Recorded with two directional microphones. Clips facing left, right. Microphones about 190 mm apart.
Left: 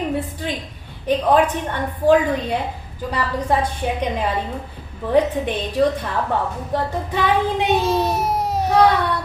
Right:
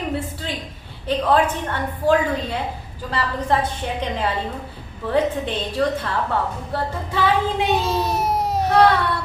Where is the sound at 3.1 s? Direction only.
15° left (ahead or behind).